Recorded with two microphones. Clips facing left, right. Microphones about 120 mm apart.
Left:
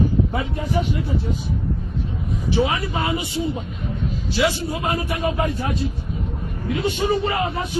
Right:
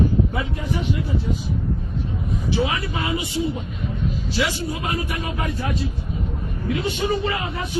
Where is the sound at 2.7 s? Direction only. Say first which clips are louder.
Left 2 dB; 30° left (ahead or behind).